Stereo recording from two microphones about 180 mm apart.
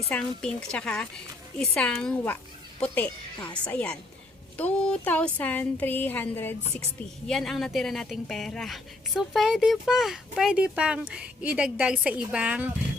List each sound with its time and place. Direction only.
0.1 s speech: 5° left (ahead or behind)